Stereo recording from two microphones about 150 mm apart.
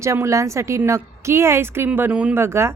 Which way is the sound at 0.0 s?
20° right (ahead or behind).